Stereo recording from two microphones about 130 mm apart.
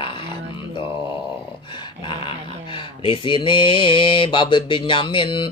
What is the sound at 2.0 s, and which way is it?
Speech, 40° left (ahead or behind).